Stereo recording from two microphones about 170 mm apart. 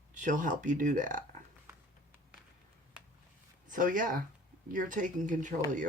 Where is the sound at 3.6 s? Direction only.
50° right (ahead or behind).